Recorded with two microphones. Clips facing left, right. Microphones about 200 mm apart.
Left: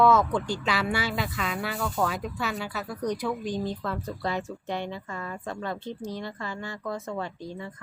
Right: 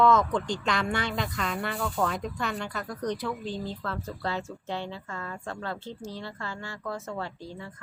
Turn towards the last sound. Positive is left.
turn(degrees=15)  # may be behind; listen again after turning